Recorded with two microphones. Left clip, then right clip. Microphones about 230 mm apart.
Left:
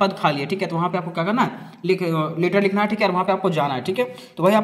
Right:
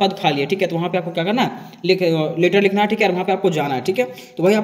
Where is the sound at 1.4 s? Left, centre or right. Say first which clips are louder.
Right 1 dB; left.